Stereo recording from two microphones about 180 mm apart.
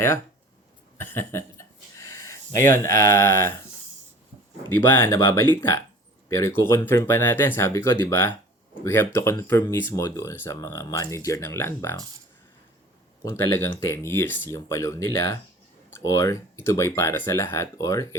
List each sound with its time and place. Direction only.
0.9 s a sound: 15° left (ahead or behind)
4.9 s speech: 15° left (ahead or behind)
13.2 s speech: 15° left (ahead or behind)